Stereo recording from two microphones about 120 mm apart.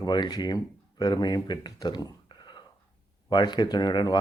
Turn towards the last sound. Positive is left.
turn(degrees=40)  # may be behind; listen again after turning